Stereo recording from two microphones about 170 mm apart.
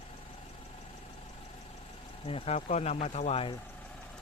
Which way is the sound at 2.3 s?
35° left (ahead or behind).